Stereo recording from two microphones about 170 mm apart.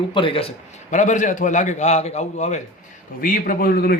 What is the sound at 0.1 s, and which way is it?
Speech, 30° left (ahead or behind).